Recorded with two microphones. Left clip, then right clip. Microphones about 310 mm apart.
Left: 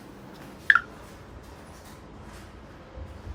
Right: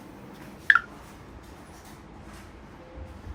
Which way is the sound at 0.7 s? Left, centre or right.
Centre.